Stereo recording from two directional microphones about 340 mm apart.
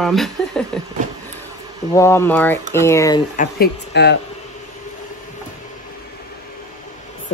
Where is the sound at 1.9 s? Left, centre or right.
Centre.